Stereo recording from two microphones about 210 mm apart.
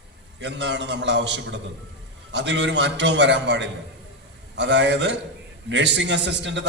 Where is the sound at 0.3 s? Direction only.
55° right (ahead or behind).